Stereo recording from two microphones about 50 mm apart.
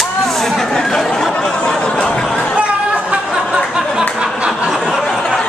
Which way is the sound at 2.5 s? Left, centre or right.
Right.